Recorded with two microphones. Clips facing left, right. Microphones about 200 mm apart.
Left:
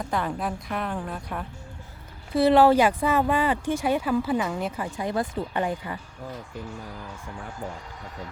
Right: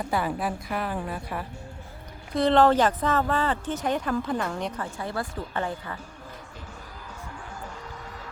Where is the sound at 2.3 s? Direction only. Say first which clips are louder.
Left 2 dB; 10° left (ahead or behind).